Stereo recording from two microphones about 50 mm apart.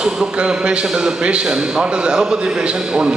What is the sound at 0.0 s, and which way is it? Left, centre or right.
A man's voice, centre.